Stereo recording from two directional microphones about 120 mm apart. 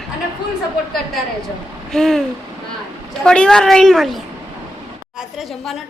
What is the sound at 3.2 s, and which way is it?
A woman's voice, 5° left (ahead or behind).